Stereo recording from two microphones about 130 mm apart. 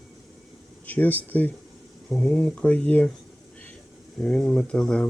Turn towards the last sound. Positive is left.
turn(degrees=5)  # may be behind; listen again after turning